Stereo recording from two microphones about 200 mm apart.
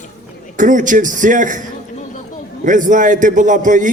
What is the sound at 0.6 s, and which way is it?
A man's voice, 40° right (ahead or behind).